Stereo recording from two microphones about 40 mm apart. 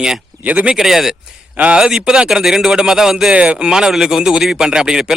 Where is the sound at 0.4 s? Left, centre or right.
Right.